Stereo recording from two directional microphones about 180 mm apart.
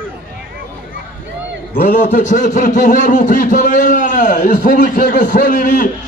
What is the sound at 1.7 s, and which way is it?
A man's voice, 45° left (ahead or behind).